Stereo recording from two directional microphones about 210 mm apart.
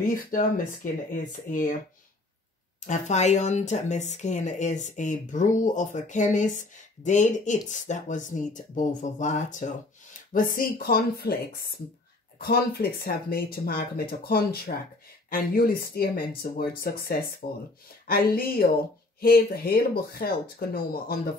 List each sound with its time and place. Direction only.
0.0 s speech: 40° left (ahead or behind)
2.9 s speech: 35° left (ahead or behind)